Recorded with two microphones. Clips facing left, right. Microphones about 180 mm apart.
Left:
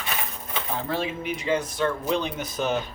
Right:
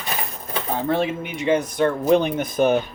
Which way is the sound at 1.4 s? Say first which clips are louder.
Right 6 dB; 20° right (ahead or behind).